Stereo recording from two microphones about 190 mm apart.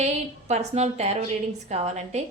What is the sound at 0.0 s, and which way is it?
A woman's voice, 35° right (ahead or behind).